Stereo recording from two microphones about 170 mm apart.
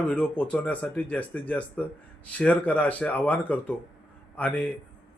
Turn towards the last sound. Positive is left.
turn(degrees=10)  # may be behind; listen again after turning